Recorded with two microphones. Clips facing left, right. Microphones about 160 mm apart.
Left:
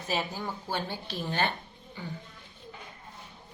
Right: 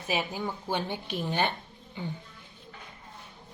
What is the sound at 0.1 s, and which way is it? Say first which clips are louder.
Speech: right 2 dB; 15° right (ahead or behind).